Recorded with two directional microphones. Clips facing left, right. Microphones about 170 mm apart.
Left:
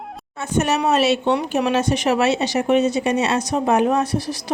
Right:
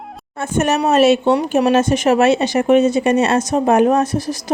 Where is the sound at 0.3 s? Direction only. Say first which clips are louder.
Right 3 dB; 50° right (ahead or behind).